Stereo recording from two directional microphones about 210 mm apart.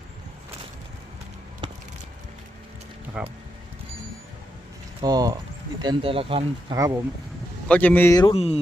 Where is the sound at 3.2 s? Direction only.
5° right (ahead or behind).